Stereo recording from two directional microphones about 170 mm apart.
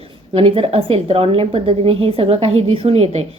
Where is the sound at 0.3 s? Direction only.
35° right (ahead or behind).